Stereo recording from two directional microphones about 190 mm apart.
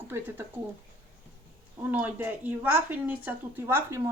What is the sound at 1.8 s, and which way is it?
Speech, 10° right (ahead or behind).